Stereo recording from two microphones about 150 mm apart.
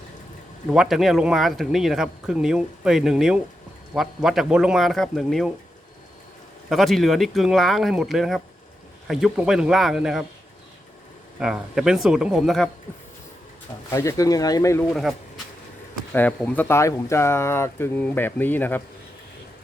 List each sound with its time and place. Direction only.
0.7 s speech: 5° right (ahead or behind)
6.7 s speech: centre (ahead or behind)
11.3 s speech: 5° right (ahead or behind)
13.9 s speech: 20° left (ahead or behind)
16.5 s speech: 15° left (ahead or behind)